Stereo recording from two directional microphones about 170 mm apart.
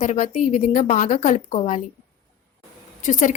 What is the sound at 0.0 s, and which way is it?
A woman's voice, 45° left (ahead or behind).